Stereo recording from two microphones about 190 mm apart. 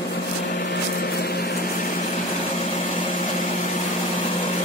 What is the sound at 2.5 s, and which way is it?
Vacuum cleaner, 40° left (ahead or behind).